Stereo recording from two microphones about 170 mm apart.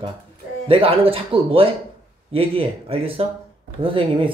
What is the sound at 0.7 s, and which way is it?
Speech, 30° right (ahead or behind).